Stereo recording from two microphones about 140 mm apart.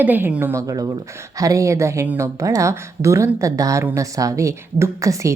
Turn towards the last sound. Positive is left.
turn(degrees=-20)  # may be behind; listen again after turning